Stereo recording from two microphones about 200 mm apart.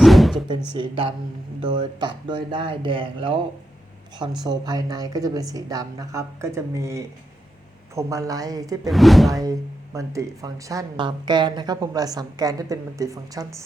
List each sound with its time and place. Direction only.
0.0 s music: centre (ahead or behind)
0.7 s speech: 25° right (ahead or behind)
4.4 s speech: 20° right (ahead or behind)
8.9 s speech: centre (ahead or behind)
9.4 s speech: 15° right (ahead or behind)